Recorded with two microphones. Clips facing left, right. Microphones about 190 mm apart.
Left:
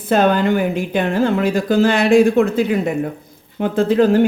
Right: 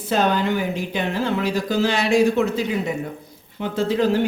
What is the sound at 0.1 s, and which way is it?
Speech, 55° left (ahead or behind).